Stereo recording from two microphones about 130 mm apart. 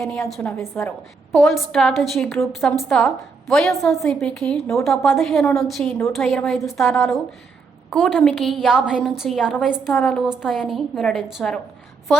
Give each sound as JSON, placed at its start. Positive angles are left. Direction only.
{"t": 0.0, "sound": "a woman's voice", "side_deg": 0}
{"t": 0.6, "sound": "a woman's voice", "side_deg": 20}
{"t": 1.3, "sound": "a woman's voice", "side_deg": 0}